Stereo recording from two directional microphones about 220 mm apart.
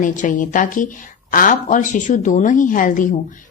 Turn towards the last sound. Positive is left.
turn(degrees=35)  # may be behind; listen again after turning